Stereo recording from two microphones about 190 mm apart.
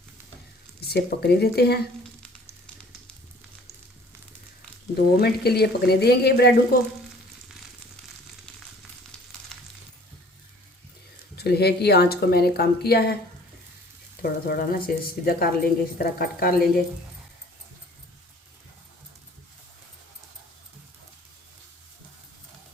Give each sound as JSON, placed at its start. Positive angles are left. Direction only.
{"t": 0.9, "sound": "speech", "side_deg": 60}
{"t": 5.2, "sound": "speech", "side_deg": 55}
{"t": 9.5, "sound": "a sound", "side_deg": 5}
{"t": 11.3, "sound": "speech", "side_deg": 55}
{"t": 14.2, "sound": "a woman's voice", "side_deg": 50}